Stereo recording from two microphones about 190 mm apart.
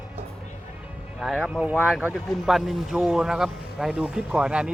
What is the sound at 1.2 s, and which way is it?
A man's voice, centre (ahead or behind).